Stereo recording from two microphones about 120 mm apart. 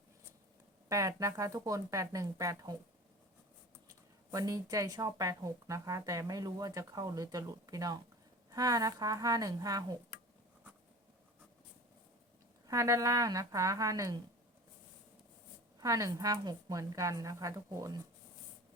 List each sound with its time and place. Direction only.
0.9 s speech: 25° right (ahead or behind)
4.3 s a woman's voice: 30° right (ahead or behind)
12.6 s speech: 25° right (ahead or behind)
15.8 s speech: 30° right (ahead or behind)